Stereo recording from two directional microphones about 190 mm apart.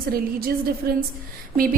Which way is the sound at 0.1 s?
50° right (ahead or behind).